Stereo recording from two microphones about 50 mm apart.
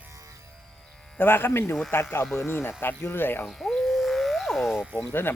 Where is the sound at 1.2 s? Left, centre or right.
Left.